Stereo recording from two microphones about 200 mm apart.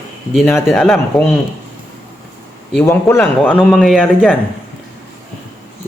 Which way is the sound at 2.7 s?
10° left (ahead or behind).